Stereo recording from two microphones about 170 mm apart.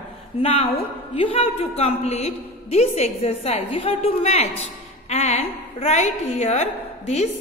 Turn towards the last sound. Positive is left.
turn(degrees=40)  # may be behind; listen again after turning